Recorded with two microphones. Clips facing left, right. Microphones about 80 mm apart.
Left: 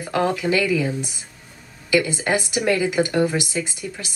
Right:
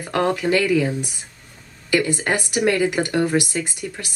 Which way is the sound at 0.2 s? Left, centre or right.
Centre.